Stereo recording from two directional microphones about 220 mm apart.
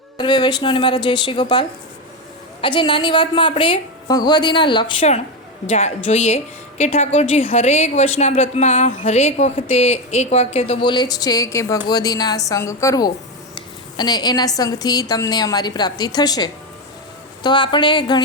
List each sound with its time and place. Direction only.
0.2 s a woman's voice: 20° left (ahead or behind)